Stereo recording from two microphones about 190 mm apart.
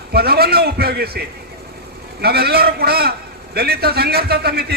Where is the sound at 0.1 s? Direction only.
55° right (ahead or behind).